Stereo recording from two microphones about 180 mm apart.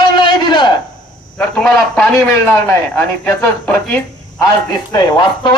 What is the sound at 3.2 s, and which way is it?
Speech, 10° left (ahead or behind).